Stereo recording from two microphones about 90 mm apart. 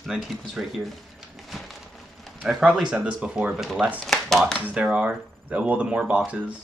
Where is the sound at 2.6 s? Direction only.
10° right (ahead or behind).